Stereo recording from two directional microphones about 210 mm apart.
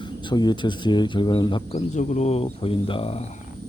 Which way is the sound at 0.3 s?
20° left (ahead or behind).